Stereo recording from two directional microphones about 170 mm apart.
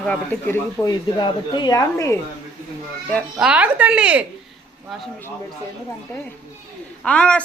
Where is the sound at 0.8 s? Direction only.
25° left (ahead or behind).